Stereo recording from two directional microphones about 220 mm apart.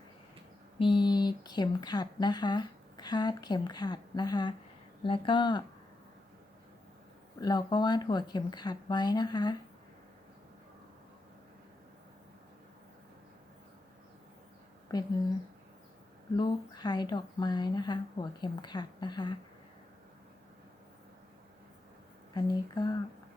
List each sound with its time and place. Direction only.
0.8 s speech: 20° left (ahead or behind)
7.3 s speech: 20° left (ahead or behind)
14.9 s speech: 15° left (ahead or behind)
16.4 s speech: 20° left (ahead or behind)
22.4 s speech: 20° left (ahead or behind)